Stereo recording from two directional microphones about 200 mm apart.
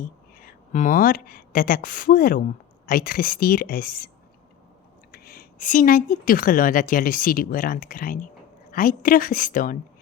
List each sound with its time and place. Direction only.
0.0 s a woman's voice: 45° left (ahead or behind)
5.1 s a woman's voice: 50° left (ahead or behind)